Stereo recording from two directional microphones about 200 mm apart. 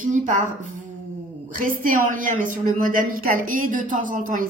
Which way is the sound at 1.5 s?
45° right (ahead or behind).